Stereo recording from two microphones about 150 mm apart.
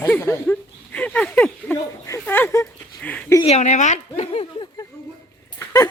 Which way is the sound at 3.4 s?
50° left (ahead or behind).